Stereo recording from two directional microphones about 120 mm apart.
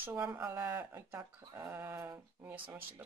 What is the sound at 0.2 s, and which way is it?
Speech, 10° right (ahead or behind).